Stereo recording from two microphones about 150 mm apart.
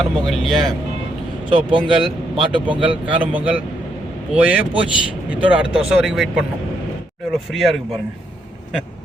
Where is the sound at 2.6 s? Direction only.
10° right (ahead or behind).